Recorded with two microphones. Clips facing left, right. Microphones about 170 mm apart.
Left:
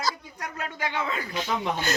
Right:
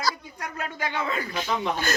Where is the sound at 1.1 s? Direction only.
20° left (ahead or behind).